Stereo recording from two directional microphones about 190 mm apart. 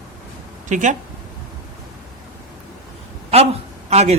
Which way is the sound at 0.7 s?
40° right (ahead or behind).